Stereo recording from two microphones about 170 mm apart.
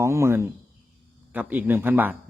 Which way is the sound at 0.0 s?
15° right (ahead or behind).